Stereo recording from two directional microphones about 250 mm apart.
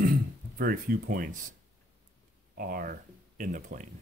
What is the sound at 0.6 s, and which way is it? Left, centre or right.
Speech, right.